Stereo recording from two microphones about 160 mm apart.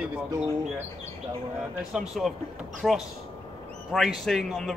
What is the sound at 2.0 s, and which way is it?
A man's voice, centre (ahead or behind).